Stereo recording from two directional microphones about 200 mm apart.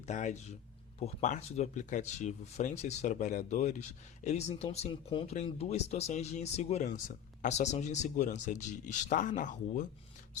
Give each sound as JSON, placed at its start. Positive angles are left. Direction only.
{"t": 0.0, "sound": "speech", "side_deg": 35}